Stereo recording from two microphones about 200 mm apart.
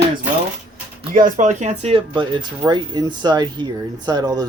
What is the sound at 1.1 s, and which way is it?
Speech, 40° right (ahead or behind).